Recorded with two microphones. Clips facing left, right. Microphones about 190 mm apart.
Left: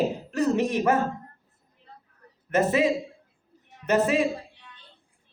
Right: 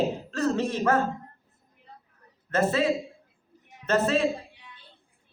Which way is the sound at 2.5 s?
15° left (ahead or behind).